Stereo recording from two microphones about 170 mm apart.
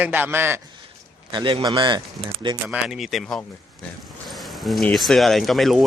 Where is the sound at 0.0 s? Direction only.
10° right (ahead or behind).